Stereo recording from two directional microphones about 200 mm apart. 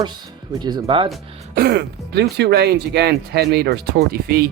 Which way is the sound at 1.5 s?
50° right (ahead or behind).